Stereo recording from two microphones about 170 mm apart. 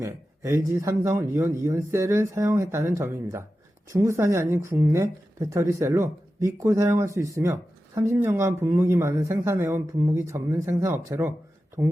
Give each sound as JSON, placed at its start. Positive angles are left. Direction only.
{"t": 0.0, "sound": "speech", "side_deg": -15}